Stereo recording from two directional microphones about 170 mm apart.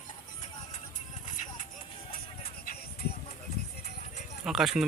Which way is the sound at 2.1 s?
60° left (ahead or behind).